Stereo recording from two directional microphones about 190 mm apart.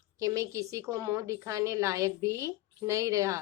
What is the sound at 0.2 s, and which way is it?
A woman's voice, 15° right (ahead or behind).